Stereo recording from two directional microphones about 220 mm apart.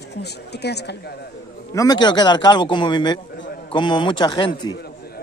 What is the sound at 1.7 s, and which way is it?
A man's voice, 15° left (ahead or behind).